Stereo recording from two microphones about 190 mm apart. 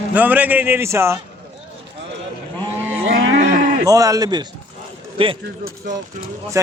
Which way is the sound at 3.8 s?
20° right (ahead or behind).